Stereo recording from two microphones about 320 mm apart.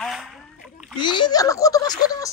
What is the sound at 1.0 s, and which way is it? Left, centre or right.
A man's voice, centre.